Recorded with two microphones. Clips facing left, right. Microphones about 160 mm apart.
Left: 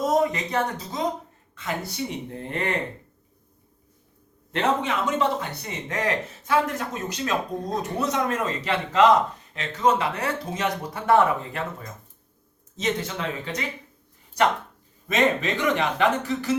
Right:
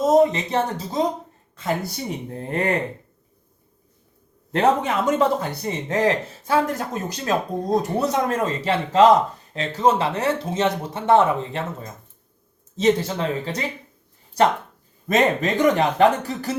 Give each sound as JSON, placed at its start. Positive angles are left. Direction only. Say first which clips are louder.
{"t": 0.0, "sound": "speech", "louder": "right 6 dB", "side_deg": -25}
{"t": 2.0, "sound": "speech", "louder": "right 1 dB", "side_deg": -40}
{"t": 4.5, "sound": "speech", "louder": "right 5 dB", "side_deg": -40}
{"t": 5.6, "sound": "speech", "louder": "right 8 dB", "side_deg": -30}
{"t": 15.0, "sound": "speech", "louder": "right 3 dB", "side_deg": -40}